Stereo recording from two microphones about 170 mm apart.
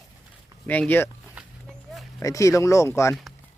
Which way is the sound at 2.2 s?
20° left (ahead or behind).